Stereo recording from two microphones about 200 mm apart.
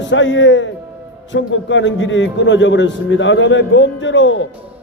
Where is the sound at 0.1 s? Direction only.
65° left (ahead or behind).